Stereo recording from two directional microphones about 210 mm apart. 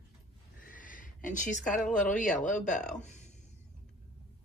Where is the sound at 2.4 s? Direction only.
35° left (ahead or behind).